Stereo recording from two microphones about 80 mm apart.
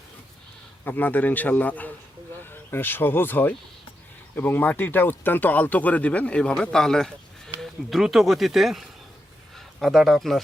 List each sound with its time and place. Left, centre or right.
0.9 s speech: left; by 10.4 s centre